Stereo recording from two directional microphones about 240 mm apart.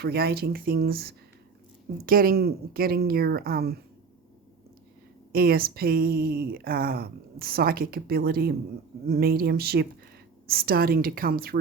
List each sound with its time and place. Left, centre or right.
0.0 s speech: right
5.3 s speech: right